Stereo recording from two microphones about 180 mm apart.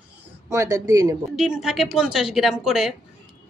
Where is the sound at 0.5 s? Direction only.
15° right (ahead or behind).